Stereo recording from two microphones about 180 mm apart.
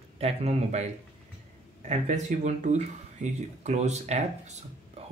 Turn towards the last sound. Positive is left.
turn(degrees=-40)  # may be behind; listen again after turning